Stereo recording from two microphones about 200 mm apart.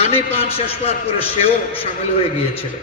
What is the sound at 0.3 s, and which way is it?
Speech, 30° left (ahead or behind).